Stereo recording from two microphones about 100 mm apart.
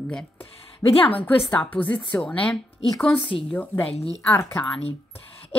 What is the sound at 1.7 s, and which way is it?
A woman's voice, 10° left (ahead or behind).